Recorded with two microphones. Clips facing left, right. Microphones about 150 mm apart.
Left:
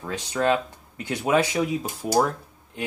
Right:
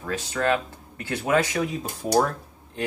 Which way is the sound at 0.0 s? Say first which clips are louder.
Left 1 dB; 15° left (ahead or behind).